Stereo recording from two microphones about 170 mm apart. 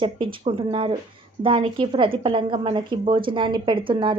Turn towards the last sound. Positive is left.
turn(degrees=-30)  # may be behind; listen again after turning